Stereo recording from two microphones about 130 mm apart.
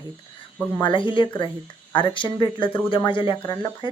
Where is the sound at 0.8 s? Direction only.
40° left (ahead or behind).